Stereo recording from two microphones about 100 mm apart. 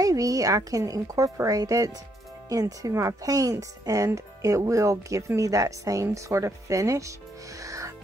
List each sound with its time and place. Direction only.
0.0 s speech: 35° right (ahead or behind)
7.6 s music: 35° right (ahead or behind)